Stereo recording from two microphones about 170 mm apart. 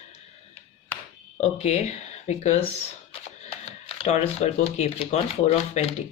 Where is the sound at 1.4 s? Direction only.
40° left (ahead or behind).